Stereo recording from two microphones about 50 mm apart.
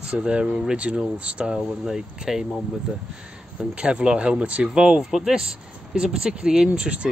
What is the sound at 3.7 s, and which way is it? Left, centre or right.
Speech, right.